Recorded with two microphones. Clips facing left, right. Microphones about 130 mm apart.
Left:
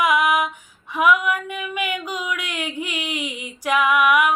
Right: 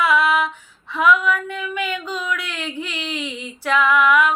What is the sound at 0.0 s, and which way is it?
Female singing, 15° left (ahead or behind).